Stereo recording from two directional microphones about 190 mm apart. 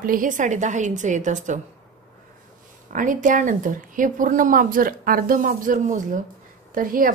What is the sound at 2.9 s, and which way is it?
Speech, 45° right (ahead or behind).